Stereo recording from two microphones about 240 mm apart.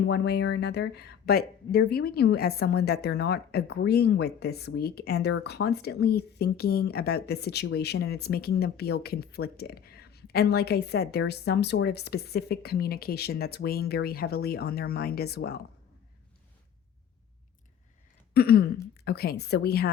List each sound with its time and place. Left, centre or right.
0.1 s speech: left
18.3 s speech: left